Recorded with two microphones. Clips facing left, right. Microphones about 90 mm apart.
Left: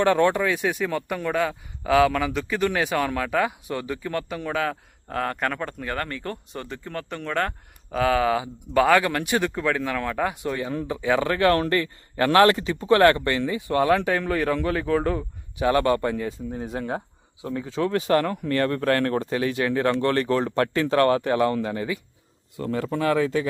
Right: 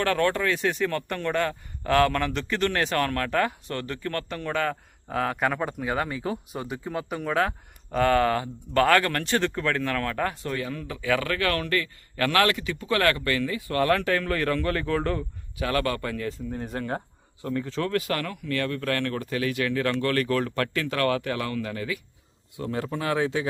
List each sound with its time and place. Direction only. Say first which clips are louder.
0.0 s a man's voice: left 4 dB; 20° left (ahead or behind)
10.6 s a man's voice: left 5 dB; 25° left (ahead or behind); by 15.2 s 10° left (ahead or behind)
15.5 s a man's voice: left 6 dB; 25° left (ahead or behind)
18.0 s a man's voice: left 8 dB; 30° left (ahead or behind)
22.5 s speech: left 3 dB; 45° left (ahead or behind)